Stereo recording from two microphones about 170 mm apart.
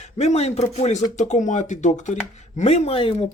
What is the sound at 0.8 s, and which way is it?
Speech, 40° left (ahead or behind).